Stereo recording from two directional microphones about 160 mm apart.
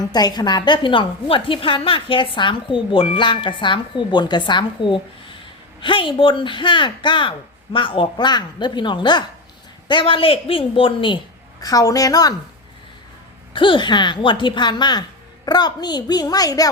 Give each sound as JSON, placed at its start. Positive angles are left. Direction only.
{"t": 0.1, "sound": "a woman's voice", "side_deg": 25}
{"t": 11.6, "sound": "a woman's voice", "side_deg": 20}
{"t": 13.5, "sound": "a woman's voice", "side_deg": 30}